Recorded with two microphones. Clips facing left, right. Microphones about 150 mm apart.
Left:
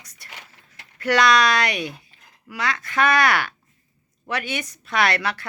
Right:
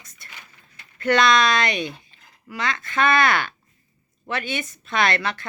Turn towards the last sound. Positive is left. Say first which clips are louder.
# even
turn(degrees=10)  # may be behind; listen again after turning